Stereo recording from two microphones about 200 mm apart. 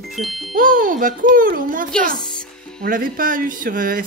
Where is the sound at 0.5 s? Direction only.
45° right (ahead or behind).